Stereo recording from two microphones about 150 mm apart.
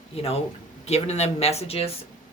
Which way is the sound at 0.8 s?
45° left (ahead or behind).